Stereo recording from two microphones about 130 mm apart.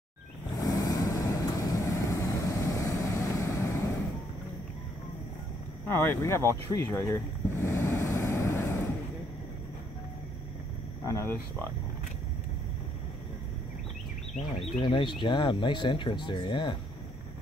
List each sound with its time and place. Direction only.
0.6 s vehicle: 30° left (ahead or behind)
5.9 s vehicle: 15° left (ahead or behind)
11.1 s speech: 20° left (ahead or behind)
14.8 s speech: 40° left (ahead or behind)